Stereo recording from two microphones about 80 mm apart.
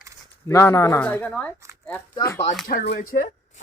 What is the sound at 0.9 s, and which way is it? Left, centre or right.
Speech, left.